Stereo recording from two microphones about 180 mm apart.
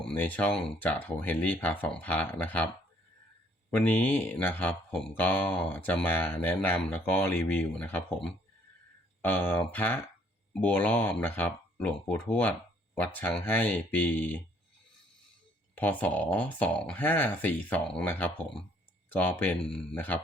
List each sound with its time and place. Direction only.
0.0 s speech: 10° left (ahead or behind)
3.7 s speech: 10° left (ahead or behind)
15.7 s speech: 10° left (ahead or behind)